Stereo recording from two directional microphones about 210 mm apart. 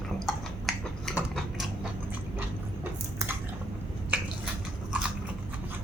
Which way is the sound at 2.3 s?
10° right (ahead or behind).